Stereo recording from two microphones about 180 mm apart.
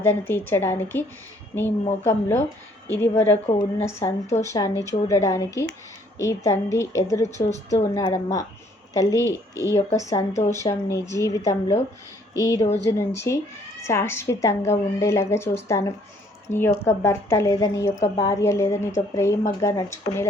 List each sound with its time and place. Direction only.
0.0 s a woman's voice: 15° left (ahead or behind)
7.5 s speech: 40° left (ahead or behind)
7.9 s a woman's voice: 20° left (ahead or behind)